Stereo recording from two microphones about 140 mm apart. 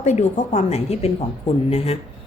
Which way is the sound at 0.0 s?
55° left (ahead or behind).